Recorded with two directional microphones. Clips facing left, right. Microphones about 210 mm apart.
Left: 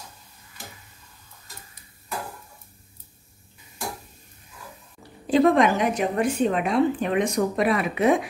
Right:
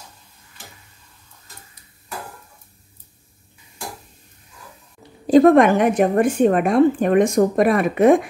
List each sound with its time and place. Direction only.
5.2 s a woman's voice: 45° right (ahead or behind)